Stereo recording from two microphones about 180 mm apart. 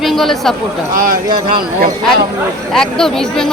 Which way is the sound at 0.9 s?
50° right (ahead or behind).